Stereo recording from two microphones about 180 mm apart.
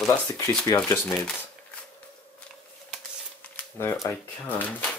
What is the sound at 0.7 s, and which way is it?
Speech, 15° left (ahead or behind).